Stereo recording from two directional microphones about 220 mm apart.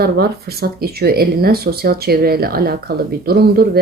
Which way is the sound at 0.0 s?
45° right (ahead or behind).